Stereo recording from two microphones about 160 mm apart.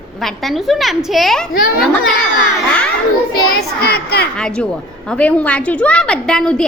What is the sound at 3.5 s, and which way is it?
Speech, 75° left (ahead or behind).